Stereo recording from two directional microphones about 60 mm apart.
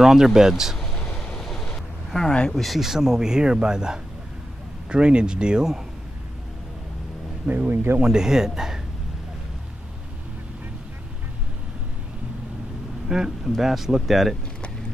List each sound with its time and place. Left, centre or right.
0.0 s speech: centre
1.0 s vehicle: centre
2.0 s a sound: centre
2.5 s speech: centre
7.4 s speech: right
8.0 s speech: centre
13.1 s speech: centre